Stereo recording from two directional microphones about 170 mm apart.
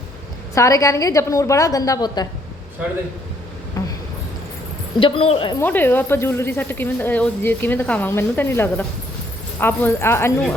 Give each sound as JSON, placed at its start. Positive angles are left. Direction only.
{"t": 0.5, "sound": "a woman's voice", "side_deg": 20}
{"t": 3.8, "sound": "a sound", "side_deg": 20}
{"t": 4.9, "sound": "a woman's voice", "side_deg": 30}
{"t": 5.5, "sound": "speech", "side_deg": 10}